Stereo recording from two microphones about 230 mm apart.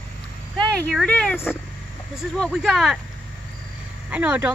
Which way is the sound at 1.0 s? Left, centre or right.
Centre.